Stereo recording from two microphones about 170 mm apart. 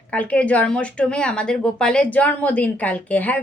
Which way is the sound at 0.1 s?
5° left (ahead or behind).